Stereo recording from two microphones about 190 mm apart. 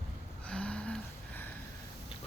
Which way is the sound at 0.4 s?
5° left (ahead or behind).